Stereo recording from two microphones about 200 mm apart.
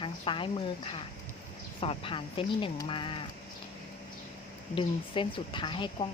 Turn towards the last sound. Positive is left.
turn(degrees=25)  # may be behind; listen again after turning